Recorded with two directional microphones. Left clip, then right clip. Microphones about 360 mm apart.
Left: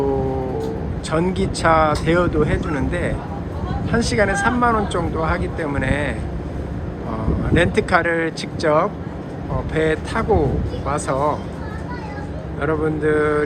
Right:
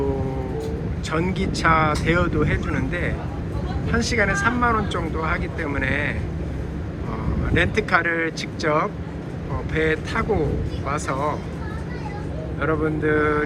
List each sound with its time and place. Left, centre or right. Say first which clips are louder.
1.1 s speech: left 4 dB; centre
7.5 s speech: left 3 dB; centre
12.5 s speech: left 2 dB; centre